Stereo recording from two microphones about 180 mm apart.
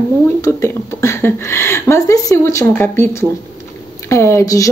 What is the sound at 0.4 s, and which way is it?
Speech, 15° left (ahead or behind).